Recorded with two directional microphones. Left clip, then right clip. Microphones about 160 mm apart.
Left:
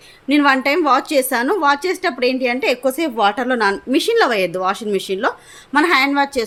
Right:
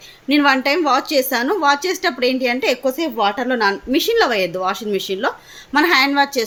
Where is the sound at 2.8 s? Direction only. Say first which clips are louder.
Left 2 dB; 20° left (ahead or behind).